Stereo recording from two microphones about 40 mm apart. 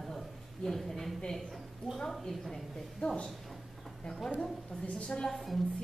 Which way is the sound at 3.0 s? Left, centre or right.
Left.